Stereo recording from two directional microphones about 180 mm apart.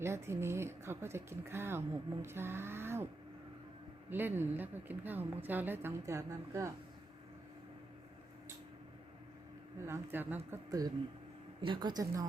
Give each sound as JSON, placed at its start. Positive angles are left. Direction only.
{"t": 0.0, "sound": "speech", "side_deg": -15}
{"t": 4.1, "sound": "speech", "side_deg": -10}
{"t": 9.7, "sound": "speech", "side_deg": -15}